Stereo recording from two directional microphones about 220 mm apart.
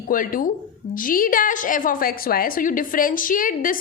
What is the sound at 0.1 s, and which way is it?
A woman's voice, 40° left (ahead or behind).